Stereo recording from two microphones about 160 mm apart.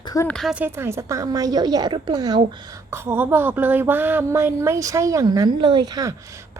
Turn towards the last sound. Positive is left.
turn(degrees=-20)  # may be behind; listen again after turning